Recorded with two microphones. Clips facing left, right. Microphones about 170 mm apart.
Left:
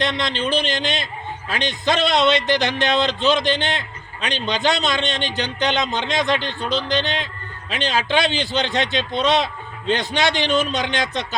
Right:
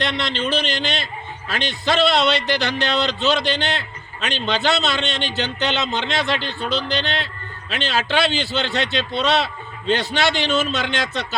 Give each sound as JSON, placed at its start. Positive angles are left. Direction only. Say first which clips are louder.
{"t": 0.0, "sound": "speech", "louder": "left 1 dB", "side_deg": 15}